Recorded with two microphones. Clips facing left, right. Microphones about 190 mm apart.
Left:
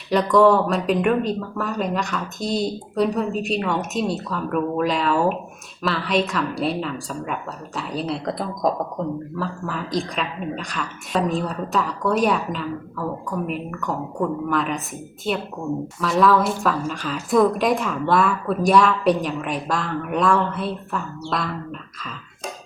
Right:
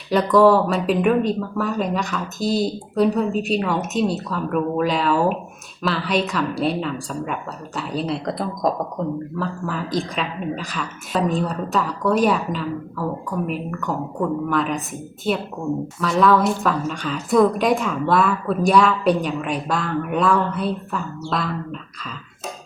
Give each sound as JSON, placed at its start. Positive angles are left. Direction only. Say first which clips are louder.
{"t": 0.1, "sound": "a woman's voice", "louder": "right 1 dB", "side_deg": 0}